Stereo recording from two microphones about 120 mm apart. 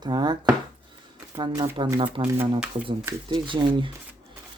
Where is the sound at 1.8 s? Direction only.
45° right (ahead or behind).